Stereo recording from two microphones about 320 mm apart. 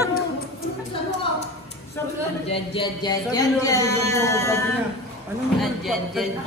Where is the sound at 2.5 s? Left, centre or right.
Centre.